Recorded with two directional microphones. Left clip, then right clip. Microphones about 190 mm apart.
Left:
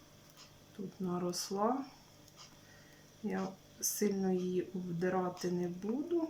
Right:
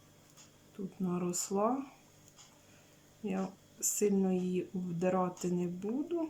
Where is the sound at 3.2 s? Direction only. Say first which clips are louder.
Right 1 dB; 15° right (ahead or behind).